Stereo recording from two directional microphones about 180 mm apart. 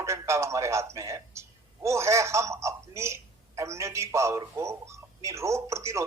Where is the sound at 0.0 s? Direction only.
15° right (ahead or behind).